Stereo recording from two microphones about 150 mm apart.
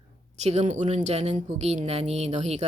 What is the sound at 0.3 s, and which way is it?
A woman's voice, 45° right (ahead or behind).